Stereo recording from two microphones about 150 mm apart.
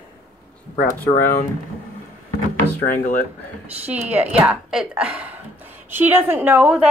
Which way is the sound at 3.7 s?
10° right (ahead or behind).